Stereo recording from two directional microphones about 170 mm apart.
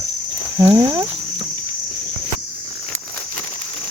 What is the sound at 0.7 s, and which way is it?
Speech, 20° right (ahead or behind).